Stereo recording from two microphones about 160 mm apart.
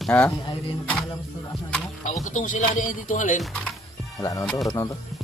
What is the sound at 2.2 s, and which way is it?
Speech, 55° left (ahead or behind).